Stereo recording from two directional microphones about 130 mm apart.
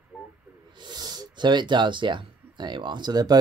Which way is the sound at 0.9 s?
30° right (ahead or behind).